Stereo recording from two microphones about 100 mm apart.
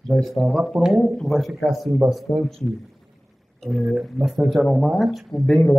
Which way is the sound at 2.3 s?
55° left (ahead or behind).